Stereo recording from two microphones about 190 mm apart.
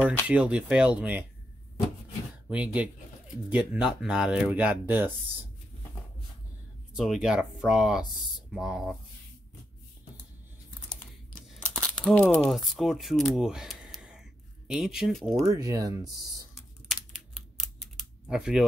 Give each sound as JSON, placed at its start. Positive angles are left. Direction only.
{"t": 0.3, "sound": "speech", "side_deg": -5}
{"t": 2.4, "sound": "speech", "side_deg": -5}
{"t": 6.9, "sound": "speech", "side_deg": 0}
{"t": 11.5, "sound": "crumpling", "side_deg": 5}
{"t": 12.3, "sound": "speech", "side_deg": -5}
{"t": 15.5, "sound": "speech", "side_deg": -20}
{"t": 16.5, "sound": "typing", "side_deg": 0}